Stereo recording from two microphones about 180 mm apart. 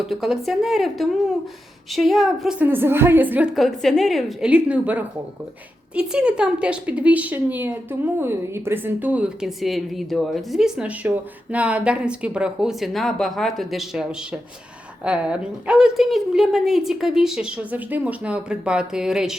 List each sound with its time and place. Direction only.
0.0 s a woman's voice: centre (ahead or behind)